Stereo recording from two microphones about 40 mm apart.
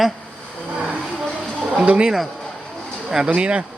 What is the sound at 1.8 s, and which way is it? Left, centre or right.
Speech, right.